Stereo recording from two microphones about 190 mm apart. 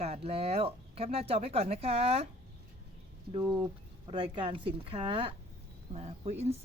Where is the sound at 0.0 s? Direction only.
30° right (ahead or behind).